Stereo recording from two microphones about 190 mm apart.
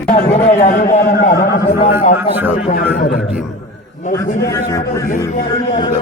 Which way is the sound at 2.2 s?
10° right (ahead or behind).